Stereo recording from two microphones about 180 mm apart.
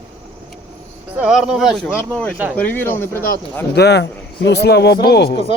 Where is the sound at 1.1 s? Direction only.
5° right (ahead or behind).